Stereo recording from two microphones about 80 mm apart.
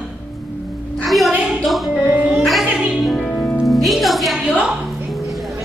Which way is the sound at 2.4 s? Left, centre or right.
Centre.